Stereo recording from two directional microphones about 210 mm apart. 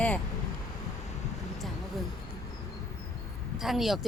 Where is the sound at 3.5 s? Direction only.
Centre (ahead or behind).